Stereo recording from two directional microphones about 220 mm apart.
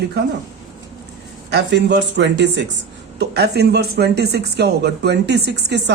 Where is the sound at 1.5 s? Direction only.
50° right (ahead or behind).